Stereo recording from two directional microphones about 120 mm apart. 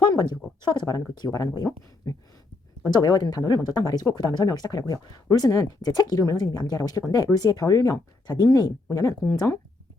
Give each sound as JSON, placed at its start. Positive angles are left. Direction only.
{"t": 0.0, "sound": "speech", "side_deg": 35}